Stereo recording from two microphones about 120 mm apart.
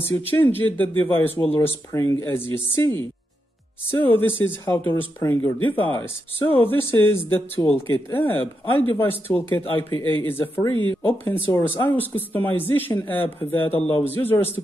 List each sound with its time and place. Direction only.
0.3 s a man's voice: 15° left (ahead or behind)